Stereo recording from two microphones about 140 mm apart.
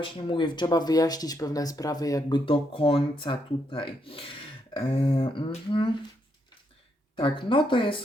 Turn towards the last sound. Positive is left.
turn(degrees=35)  # may be behind; listen again after turning